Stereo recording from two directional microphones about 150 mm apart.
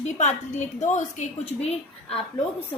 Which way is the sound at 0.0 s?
50° left (ahead or behind).